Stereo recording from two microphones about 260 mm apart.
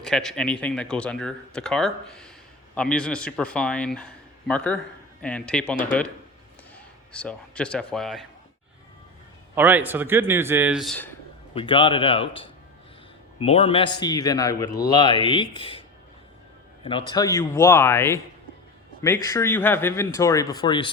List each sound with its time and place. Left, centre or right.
0.0 s speech: centre
7.1 s speech: centre
9.6 s speech: centre
11.5 s speech: centre
17.1 s speech: centre